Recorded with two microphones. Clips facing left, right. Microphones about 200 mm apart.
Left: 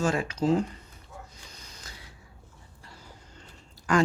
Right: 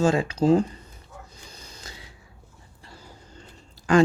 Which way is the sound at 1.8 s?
25° right (ahead or behind).